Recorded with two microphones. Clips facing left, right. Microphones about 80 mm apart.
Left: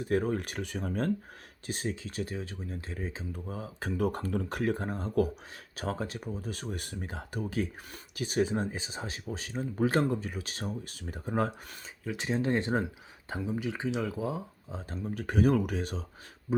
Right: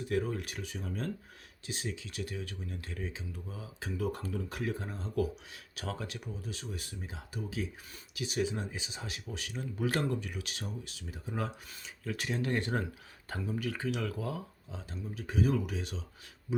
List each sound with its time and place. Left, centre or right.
0.1 s speech: left
5.7 s speech: left
12.1 s speech: left
14.7 s speech: left
16.5 s a sound: left